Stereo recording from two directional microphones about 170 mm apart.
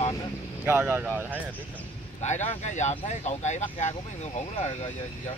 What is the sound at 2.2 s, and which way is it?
Speech, 45° left (ahead or behind).